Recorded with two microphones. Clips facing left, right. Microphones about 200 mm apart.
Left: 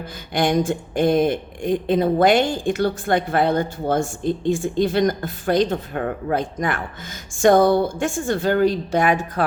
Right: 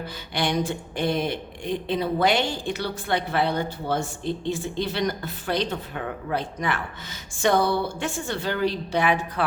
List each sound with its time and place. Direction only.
0.3 s speech: 50° left (ahead or behind)